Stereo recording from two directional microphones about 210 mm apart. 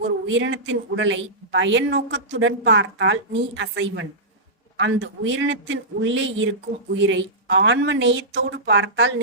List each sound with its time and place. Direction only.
0.3 s a woman's voice: 65° right (ahead or behind)